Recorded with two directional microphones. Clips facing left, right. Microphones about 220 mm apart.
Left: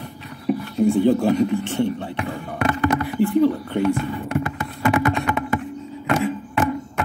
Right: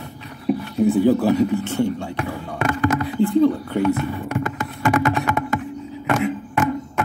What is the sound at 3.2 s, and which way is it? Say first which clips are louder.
Speech: right 1 dB; 20° right (ahead or behind).